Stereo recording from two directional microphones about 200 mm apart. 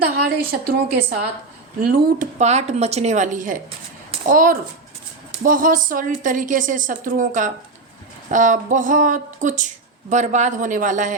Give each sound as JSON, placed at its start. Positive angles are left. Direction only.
{"t": 0.0, "sound": "a woman's voice", "side_deg": -50}